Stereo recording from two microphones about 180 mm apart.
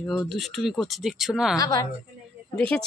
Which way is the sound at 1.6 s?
20° left (ahead or behind).